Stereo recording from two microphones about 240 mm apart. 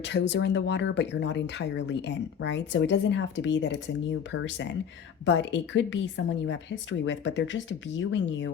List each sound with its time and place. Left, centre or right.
0.0 s speech: left